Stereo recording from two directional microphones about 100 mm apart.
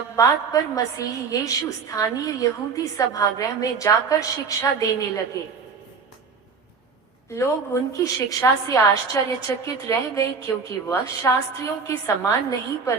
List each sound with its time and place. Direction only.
0.2 s a woman's voice: 35° left (ahead or behind)
7.3 s a woman's voice: 30° left (ahead or behind)